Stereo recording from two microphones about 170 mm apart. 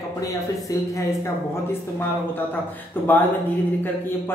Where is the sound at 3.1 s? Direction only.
10° left (ahead or behind).